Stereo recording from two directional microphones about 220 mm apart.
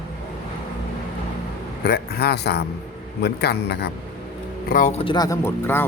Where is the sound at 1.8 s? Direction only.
45° left (ahead or behind).